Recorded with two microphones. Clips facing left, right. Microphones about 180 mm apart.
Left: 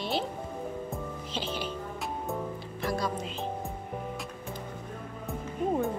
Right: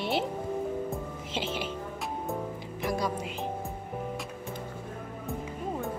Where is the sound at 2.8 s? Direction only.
15° right (ahead or behind).